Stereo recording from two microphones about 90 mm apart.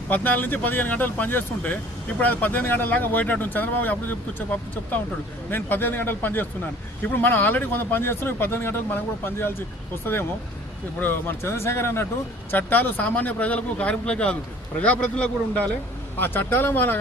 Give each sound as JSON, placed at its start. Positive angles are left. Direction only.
{"t": 0.1, "sound": "speech", "side_deg": 20}
{"t": 5.5, "sound": "speech", "side_deg": 20}
{"t": 11.0, "sound": "speech", "side_deg": 25}